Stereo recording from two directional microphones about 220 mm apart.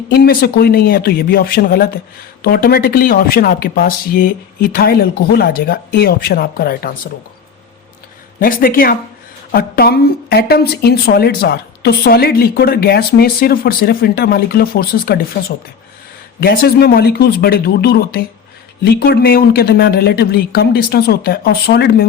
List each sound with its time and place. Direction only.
0.1 s a woman's voice: 45° left (ahead or behind)
8.4 s a woman's voice: 40° left (ahead or behind)
16.4 s a woman's voice: 45° left (ahead or behind)